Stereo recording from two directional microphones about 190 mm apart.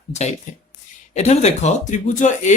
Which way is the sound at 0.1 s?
35° left (ahead or behind).